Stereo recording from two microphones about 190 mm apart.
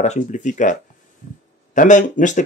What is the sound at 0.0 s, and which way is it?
Speech, 40° left (ahead or behind).